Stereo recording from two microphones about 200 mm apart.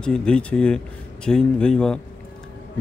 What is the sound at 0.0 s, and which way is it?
Speech, 5° left (ahead or behind).